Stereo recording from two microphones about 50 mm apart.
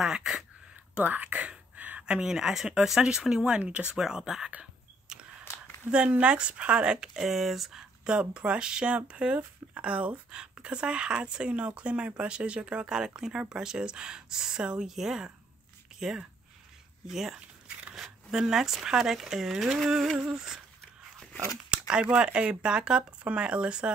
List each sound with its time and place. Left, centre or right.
0.0 s speech: centre
1.0 s whispering: right
2.0 s speech: centre
3.5 s speech: right
4.0 s speech: centre
5.9 s speech: right
7.2 s speech: centre
8.0 s speech: centre
20.2 s speech: centre
21.6 s speech: centre